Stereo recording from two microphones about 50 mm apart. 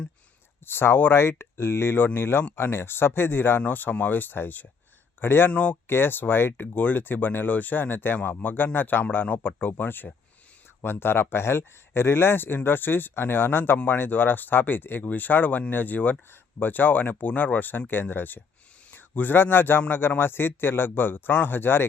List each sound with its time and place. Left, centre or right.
0.6 s speech: left
5.5 s speech: left
5.9 s speech: left
9.0 s a man's voice: left